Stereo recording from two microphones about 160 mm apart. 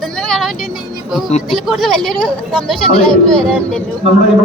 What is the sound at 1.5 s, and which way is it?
A woman's voice, centre (ahead or behind).